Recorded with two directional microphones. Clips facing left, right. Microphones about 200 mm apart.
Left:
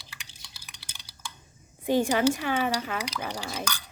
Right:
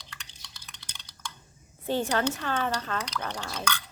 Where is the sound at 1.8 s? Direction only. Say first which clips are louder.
Left 4 dB; 15° left (ahead or behind).